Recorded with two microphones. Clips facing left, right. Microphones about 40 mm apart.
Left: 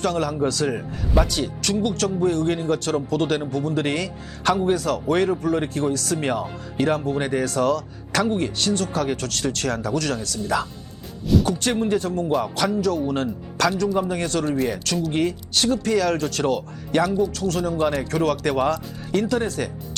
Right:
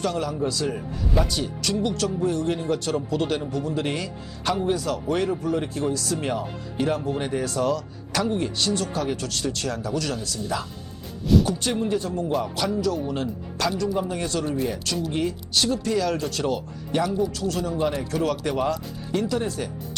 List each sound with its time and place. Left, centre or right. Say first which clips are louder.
0.0 s speech: left 3 dB; left
0.8 s speech: left 3 dB; left
1.3 s speech: left 2 dB; left
14.1 s speech: left 3 dB; left
14.5 s speech: left 3 dB; left
15.1 s speech: left 2 dB; left